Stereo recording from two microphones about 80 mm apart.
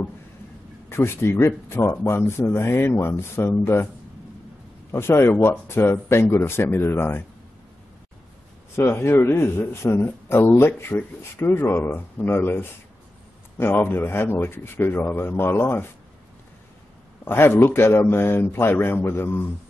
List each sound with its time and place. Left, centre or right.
0.8 s speech: left
4.9 s speech: left
8.7 s speech: left
17.2 s speech: left